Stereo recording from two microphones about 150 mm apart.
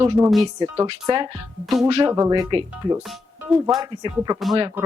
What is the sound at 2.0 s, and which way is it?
Speech, 25° right (ahead or behind).